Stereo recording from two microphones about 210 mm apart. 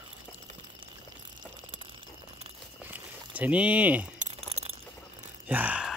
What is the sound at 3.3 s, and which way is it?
Speech, 5° right (ahead or behind).